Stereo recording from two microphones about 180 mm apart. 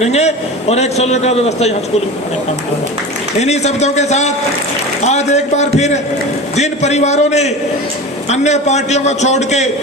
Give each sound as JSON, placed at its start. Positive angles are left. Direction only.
{"t": 0.0, "sound": "a man's voice", "side_deg": 35}
{"t": 3.4, "sound": "a man's voice", "side_deg": 40}